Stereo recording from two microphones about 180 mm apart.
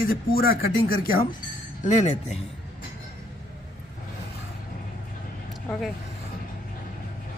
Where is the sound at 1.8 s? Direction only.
40° left (ahead or behind).